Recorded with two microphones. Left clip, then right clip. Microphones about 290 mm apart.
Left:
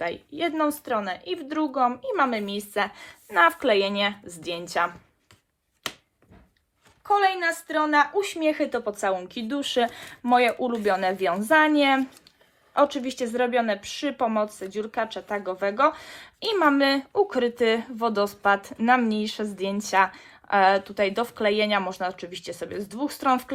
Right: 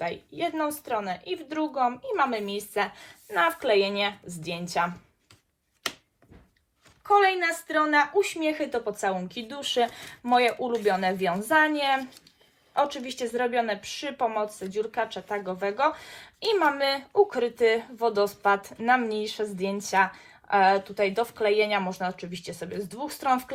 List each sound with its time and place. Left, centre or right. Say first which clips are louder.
0.0 s speech: left 2 dB; left
7.0 s a woman's voice: even; centre
8.2 s speech: left 2 dB; left